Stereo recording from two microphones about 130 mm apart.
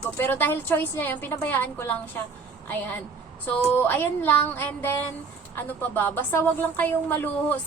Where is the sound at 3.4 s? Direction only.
15° left (ahead or behind).